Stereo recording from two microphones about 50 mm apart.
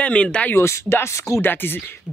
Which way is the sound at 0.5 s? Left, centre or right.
Left.